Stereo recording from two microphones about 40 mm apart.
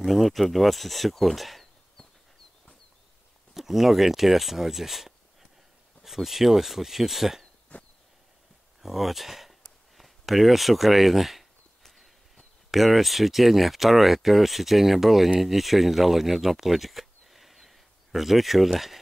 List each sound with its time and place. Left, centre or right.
0.0 s speech: centre
3.5 s speech: centre
7.7 s a sound: left
8.8 s speech: centre
12.7 s speech: centre